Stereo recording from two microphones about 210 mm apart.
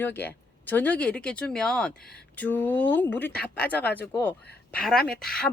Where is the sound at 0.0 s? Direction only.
10° left (ahead or behind).